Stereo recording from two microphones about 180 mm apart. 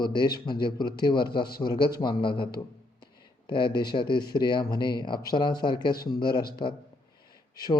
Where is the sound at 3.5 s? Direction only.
25° left (ahead or behind).